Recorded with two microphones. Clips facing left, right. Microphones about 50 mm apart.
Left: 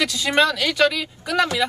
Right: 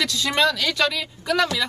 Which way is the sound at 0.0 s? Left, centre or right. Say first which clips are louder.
Left 2 dB; centre.